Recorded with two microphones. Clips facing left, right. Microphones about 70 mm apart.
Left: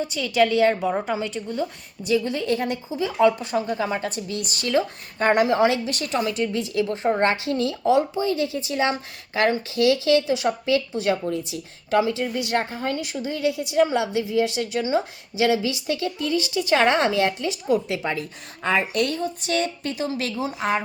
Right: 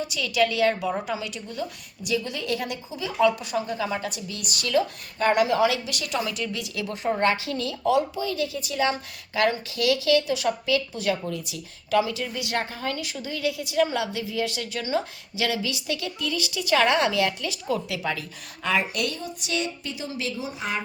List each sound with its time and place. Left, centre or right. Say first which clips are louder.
0.0 s a woman's voice: left 3 dB; left